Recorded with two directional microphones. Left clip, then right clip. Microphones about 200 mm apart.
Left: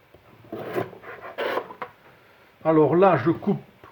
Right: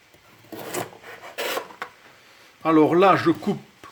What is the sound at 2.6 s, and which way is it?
Speech, 55° right (ahead or behind).